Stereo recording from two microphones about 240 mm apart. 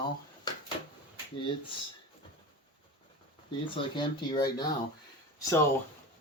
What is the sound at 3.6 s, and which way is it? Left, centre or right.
Speech, centre.